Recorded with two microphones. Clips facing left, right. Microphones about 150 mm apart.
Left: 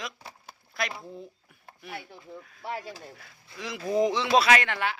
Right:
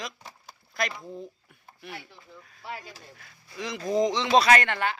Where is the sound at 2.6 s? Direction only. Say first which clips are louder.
Left 4 dB; 55° left (ahead or behind).